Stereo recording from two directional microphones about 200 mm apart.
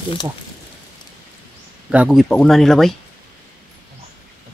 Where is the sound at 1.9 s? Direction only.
5° right (ahead or behind).